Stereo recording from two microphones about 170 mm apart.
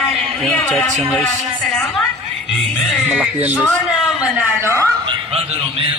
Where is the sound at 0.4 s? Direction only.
5° left (ahead or behind).